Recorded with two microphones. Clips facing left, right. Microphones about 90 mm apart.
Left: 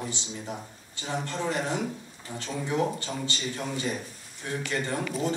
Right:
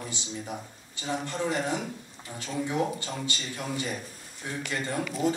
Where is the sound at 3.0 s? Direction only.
15° right (ahead or behind).